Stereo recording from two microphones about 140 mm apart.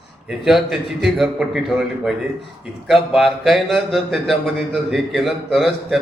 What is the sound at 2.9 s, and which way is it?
A man's voice, centre (ahead or behind).